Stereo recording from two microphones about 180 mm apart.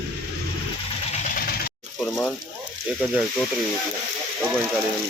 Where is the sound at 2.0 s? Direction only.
10° left (ahead or behind).